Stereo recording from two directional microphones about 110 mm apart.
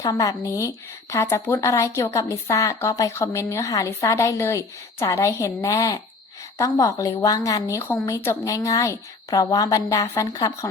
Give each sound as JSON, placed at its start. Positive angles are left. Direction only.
{"t": 0.0, "sound": "a woman's voice", "side_deg": 35}